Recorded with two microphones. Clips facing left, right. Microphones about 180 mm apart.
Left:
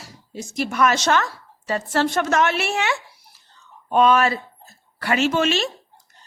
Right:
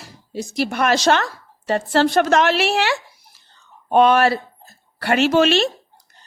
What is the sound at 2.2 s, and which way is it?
Speech, 90° right.